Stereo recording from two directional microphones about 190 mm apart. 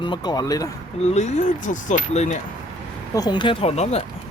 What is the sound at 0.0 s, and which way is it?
Speech, 25° left (ahead or behind).